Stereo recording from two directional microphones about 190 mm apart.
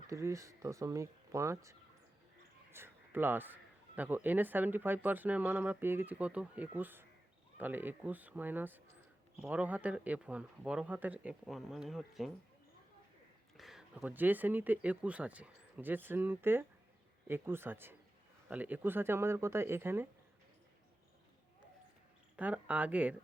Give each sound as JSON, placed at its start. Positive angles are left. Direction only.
{"t": 0.1, "sound": "speech", "side_deg": -15}
{"t": 2.7, "sound": "speech", "side_deg": -10}
{"t": 13.6, "sound": "speech", "side_deg": 0}
{"t": 22.4, "sound": "speech", "side_deg": -10}